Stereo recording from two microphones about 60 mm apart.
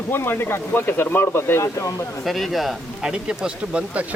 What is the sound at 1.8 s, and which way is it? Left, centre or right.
Speech, left.